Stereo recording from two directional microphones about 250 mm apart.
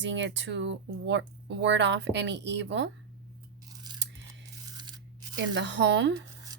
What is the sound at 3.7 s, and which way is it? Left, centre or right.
Scissors, centre.